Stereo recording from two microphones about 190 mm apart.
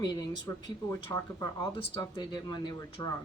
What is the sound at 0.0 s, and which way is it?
Speech, 20° left (ahead or behind).